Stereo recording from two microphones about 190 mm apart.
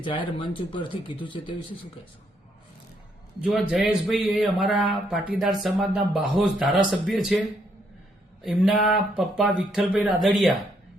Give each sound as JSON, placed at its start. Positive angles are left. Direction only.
{"t": 0.0, "sound": "speech", "side_deg": 25}
{"t": 3.4, "sound": "speech", "side_deg": -5}
{"t": 8.4, "sound": "speech", "side_deg": 0}